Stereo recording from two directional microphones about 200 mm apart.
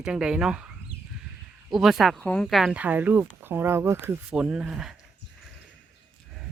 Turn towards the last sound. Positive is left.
turn(degrees=0)  # may be behind; listen again after turning